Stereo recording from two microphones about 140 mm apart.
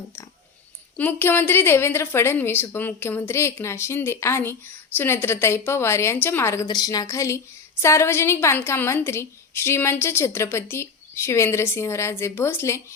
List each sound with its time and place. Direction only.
0.9 s a woman's voice: 15° left (ahead or behind)